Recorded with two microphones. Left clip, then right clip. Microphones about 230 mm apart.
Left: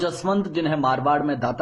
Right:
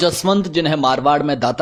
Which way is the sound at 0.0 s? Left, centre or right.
Right.